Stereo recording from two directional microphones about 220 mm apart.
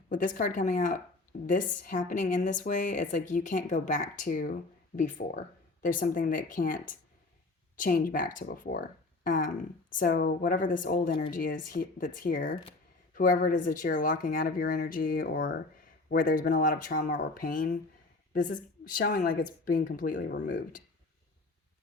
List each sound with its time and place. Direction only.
0.1 s a woman's voice: 35° left (ahead or behind)